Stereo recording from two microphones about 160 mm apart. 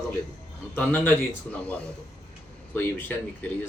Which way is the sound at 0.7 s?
10° left (ahead or behind).